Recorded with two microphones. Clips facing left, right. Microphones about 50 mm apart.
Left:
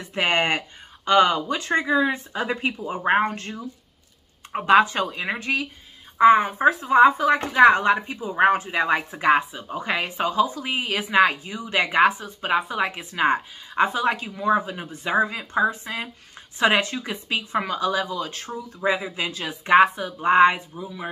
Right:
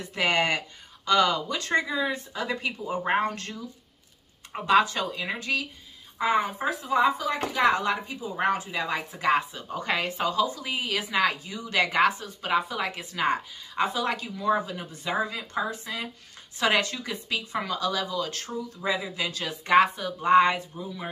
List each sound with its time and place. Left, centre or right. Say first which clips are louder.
0.0 s speech: left 3 dB; left
9.5 s speech: left 2 dB; centre